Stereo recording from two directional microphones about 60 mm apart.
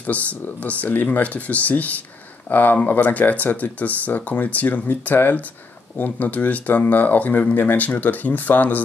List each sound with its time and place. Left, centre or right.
0.0 s speech: left